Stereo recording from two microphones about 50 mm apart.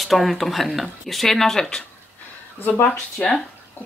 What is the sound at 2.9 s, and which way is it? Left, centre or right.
Speech, centre.